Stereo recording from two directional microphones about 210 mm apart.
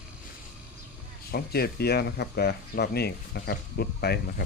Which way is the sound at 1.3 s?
50° left (ahead or behind).